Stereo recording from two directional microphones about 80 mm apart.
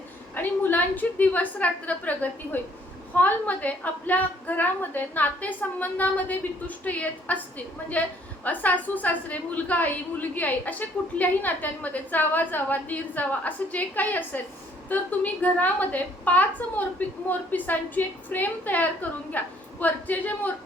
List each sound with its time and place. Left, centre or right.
0.3 s a woman's voice: left